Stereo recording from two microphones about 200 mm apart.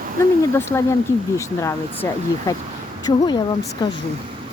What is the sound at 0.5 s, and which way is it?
Speech, 10° left (ahead or behind).